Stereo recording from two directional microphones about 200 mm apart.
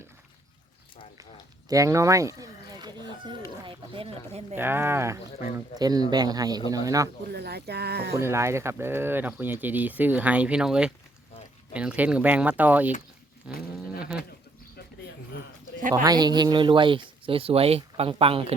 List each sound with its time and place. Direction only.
1.7 s chicken: 15° right (ahead or behind)
4.5 s speech: 10° right (ahead or behind)
7.3 s speech: 55° right (ahead or behind)
8.2 s speech: 15° right (ahead or behind)
13.5 s livestock: 5° right (ahead or behind)
16.0 s speech: 20° right (ahead or behind)